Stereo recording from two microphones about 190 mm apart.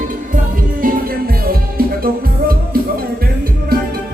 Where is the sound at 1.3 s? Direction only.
50° right (ahead or behind).